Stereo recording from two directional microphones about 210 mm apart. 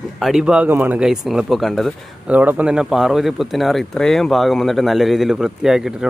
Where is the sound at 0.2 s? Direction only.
Centre (ahead or behind).